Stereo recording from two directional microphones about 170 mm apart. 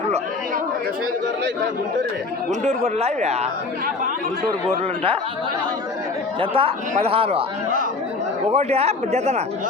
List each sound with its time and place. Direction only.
2.5 s speech: 45° right (ahead or behind)
6.4 s a man's voice: 30° right (ahead or behind)
8.5 s a man's voice: 40° right (ahead or behind)